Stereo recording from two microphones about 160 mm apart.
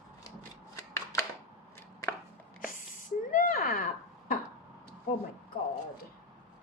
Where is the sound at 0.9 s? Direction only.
20° left (ahead or behind).